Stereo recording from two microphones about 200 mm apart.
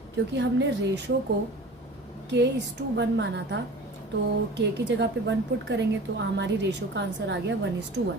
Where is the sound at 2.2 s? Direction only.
60° right (ahead or behind).